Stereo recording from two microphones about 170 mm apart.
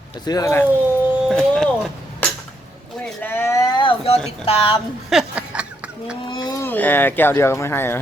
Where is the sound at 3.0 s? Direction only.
10° left (ahead or behind); by 4.2 s 35° left (ahead or behind).